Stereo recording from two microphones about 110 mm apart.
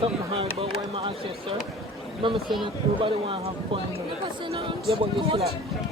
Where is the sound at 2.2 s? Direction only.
50° right (ahead or behind).